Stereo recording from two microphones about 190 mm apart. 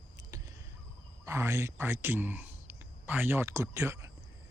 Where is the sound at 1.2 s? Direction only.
15° right (ahead or behind).